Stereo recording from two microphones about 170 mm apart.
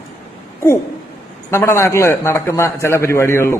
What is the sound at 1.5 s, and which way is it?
A man's voice, 15° left (ahead or behind).